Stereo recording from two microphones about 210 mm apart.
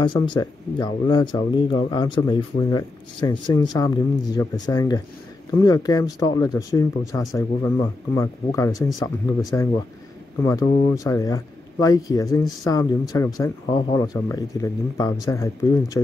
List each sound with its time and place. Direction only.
0.0 s a man's voice: 20° left (ahead or behind)
10.4 s speech: 15° left (ahead or behind)